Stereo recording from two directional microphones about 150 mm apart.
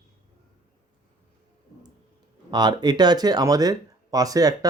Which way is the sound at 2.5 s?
30° right (ahead or behind).